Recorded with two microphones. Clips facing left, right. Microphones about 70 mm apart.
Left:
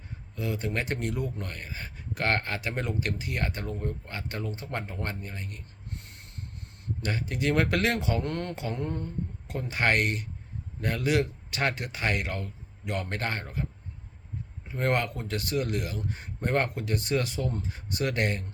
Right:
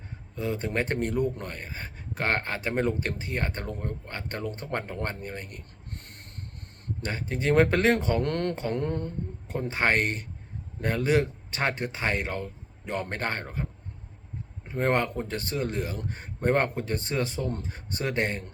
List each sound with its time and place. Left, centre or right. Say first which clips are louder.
0.3 s speech: right 3 dB; right
7.0 s speech: even; right
8.7 s a sound: right 4 dB; right
9.5 s speech: right 1 dB; right
14.7 s speech: right 2 dB; right